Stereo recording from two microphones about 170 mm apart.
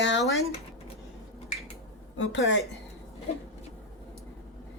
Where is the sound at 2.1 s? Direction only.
90° left.